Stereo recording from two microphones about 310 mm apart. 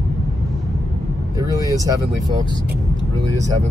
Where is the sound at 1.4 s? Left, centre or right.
Centre.